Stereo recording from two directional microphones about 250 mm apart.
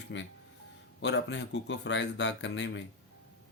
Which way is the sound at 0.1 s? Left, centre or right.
Left.